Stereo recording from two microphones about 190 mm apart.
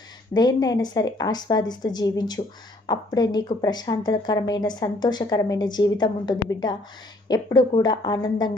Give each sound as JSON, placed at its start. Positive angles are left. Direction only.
{"t": 0.3, "sound": "speech", "side_deg": 20}